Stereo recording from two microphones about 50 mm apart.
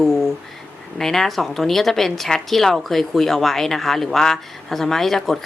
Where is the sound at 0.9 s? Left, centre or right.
Centre.